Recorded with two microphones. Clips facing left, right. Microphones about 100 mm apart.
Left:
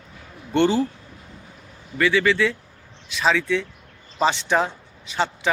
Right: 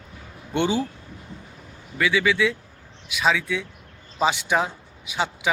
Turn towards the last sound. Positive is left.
turn(degrees=-5)  # may be behind; listen again after turning